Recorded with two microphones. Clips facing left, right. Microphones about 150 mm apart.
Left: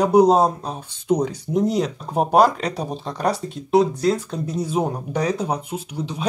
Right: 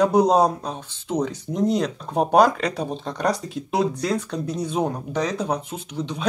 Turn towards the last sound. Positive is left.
turn(degrees=10)  # may be behind; listen again after turning